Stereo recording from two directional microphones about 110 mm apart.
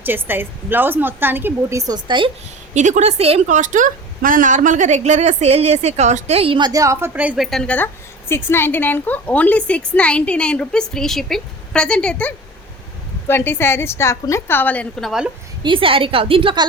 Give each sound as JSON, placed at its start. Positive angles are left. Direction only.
{"t": 0.0, "sound": "a woman's voice", "side_deg": -20}
{"t": 1.8, "sound": "a woman's voice", "side_deg": -40}
{"t": 2.7, "sound": "a woman's voice", "side_deg": -90}
{"t": 4.5, "sound": "a woman's voice", "side_deg": -90}
{"t": 6.6, "sound": "a woman's voice", "side_deg": -35}
{"t": 7.1, "sound": "a woman's voice", "side_deg": -15}
{"t": 7.3, "sound": "a woman's voice", "side_deg": 0}
{"t": 8.4, "sound": "a woman's voice", "side_deg": 20}
{"t": 13.2, "sound": "a woman's voice", "side_deg": 20}
{"t": 15.0, "sound": "a woman's voice", "side_deg": -5}
{"t": 15.6, "sound": "a woman's voice", "side_deg": -50}